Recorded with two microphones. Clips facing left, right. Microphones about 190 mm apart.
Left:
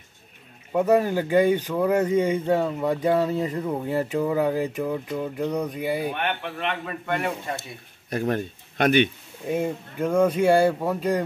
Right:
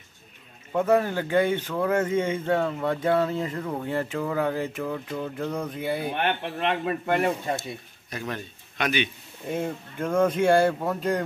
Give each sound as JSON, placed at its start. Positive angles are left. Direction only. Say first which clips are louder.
{"t": 0.7, "sound": "speech", "louder": "left 2 dB", "side_deg": 10}
{"t": 6.1, "sound": "speech", "louder": "right 1 dB", "side_deg": -35}
{"t": 8.1, "sound": "speech", "louder": "left 8 dB", "side_deg": 50}
{"t": 9.5, "sound": "speech", "louder": "left 3 dB", "side_deg": 10}